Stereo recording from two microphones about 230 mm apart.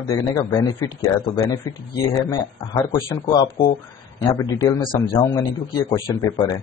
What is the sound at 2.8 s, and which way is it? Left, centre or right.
A man's voice, centre.